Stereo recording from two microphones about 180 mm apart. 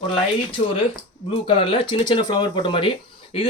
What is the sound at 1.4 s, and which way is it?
Speech, 30° left (ahead or behind).